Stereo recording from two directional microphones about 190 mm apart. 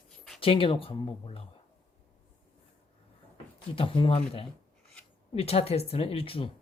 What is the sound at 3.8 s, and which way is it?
Speech, 30° left (ahead or behind).